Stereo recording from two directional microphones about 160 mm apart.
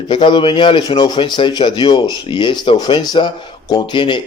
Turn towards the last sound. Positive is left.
turn(degrees=30)  # may be behind; listen again after turning